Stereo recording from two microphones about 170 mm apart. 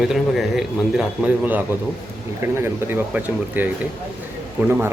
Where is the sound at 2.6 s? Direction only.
15° right (ahead or behind).